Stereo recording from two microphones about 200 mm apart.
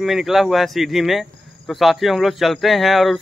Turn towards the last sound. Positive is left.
turn(degrees=0)  # may be behind; listen again after turning